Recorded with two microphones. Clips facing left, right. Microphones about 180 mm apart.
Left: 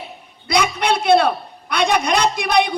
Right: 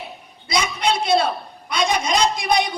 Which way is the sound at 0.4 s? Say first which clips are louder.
Left 3 dB; 60° left (ahead or behind).